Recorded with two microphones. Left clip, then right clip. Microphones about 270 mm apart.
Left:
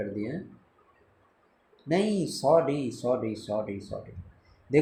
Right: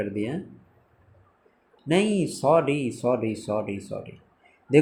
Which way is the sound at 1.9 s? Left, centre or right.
Centre.